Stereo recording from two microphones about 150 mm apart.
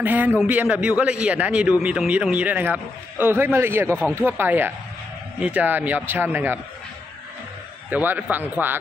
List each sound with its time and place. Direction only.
0.0 s a man's voice: 10° right (ahead or behind)
7.9 s a man's voice: 10° right (ahead or behind)